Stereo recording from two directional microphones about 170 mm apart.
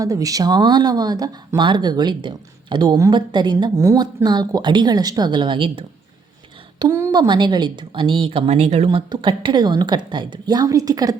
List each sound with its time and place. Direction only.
0.0 s speech: 20° right (ahead or behind)